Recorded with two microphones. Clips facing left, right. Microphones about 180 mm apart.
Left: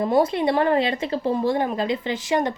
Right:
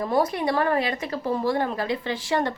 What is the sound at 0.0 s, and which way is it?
Speech, 25° left (ahead or behind).